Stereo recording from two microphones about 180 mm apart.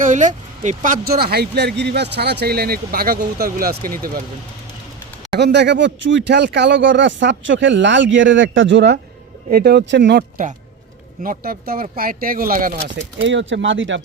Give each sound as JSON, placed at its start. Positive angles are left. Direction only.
{"t": 0.0, "sound": "speech", "side_deg": -45}
{"t": 5.3, "sound": "speech", "side_deg": -70}
{"t": 9.5, "sound": "speech", "side_deg": -60}
{"t": 11.2, "sound": "speech", "side_deg": -55}
{"t": 13.1, "sound": "speech", "side_deg": -90}